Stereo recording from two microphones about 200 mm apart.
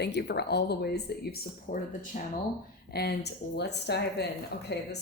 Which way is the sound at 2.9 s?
55° left (ahead or behind).